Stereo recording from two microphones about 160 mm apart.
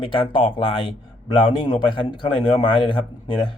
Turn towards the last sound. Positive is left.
turn(degrees=30)  # may be behind; listen again after turning